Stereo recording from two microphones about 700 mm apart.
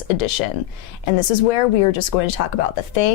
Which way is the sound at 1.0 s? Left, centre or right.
Left.